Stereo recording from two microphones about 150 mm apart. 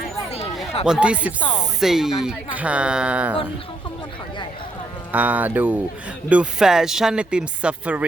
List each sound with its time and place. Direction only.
0.9 s speech: 5° right (ahead or behind)
5.1 s speech: 10° right (ahead or behind)